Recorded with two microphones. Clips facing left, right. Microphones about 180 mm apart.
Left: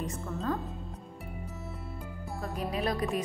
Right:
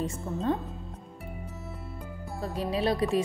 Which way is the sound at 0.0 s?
30° right (ahead or behind).